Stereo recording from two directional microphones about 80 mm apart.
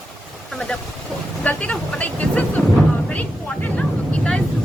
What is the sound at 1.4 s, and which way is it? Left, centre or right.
Speech, centre.